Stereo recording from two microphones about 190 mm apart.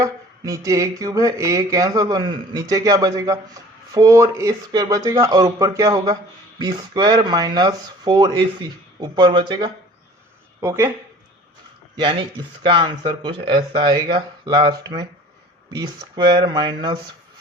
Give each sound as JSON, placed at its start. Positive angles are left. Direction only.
{"t": 0.0, "sound": "speech", "side_deg": -15}
{"t": 12.6, "sound": "speech", "side_deg": -25}